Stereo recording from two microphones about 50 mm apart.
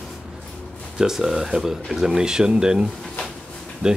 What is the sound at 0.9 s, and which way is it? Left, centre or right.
Speech, centre.